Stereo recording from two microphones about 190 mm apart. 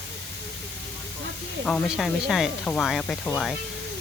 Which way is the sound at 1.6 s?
Centre (ahead or behind).